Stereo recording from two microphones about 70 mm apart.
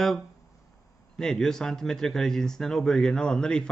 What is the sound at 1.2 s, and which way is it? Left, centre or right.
A man's voice, centre.